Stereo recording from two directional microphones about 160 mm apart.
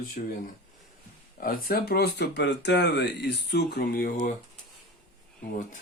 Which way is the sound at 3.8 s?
60° left (ahead or behind).